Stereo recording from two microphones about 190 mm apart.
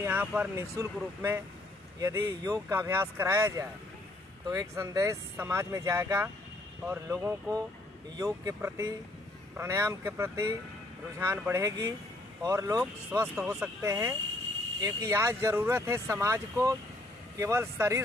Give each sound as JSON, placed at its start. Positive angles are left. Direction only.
{"t": 0.0, "sound": "speech", "side_deg": -10}
{"t": 12.8, "sound": "speech", "side_deg": -5}
{"t": 13.8, "sound": "speech", "side_deg": -15}